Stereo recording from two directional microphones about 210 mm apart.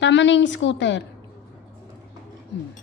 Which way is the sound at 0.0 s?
60° left (ahead or behind).